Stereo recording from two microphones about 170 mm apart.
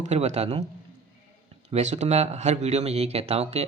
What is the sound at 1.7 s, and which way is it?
Speech, 40° right (ahead or behind).